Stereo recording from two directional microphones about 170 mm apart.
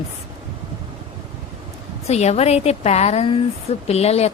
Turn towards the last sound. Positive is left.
turn(degrees=40)  # may be behind; listen again after turning